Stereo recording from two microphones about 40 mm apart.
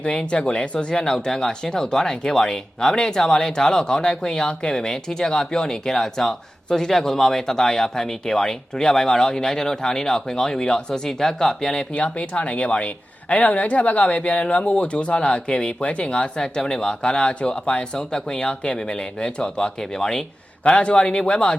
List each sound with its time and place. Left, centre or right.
0.0 s speech: left
11.2 s speech: centre
11.9 s speech: left
16.6 s speech: centre